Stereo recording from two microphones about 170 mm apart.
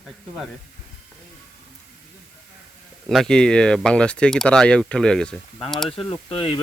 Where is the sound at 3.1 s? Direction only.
5° left (ahead or behind).